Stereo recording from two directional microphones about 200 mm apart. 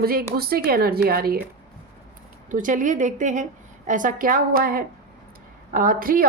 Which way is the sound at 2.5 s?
40° right (ahead or behind).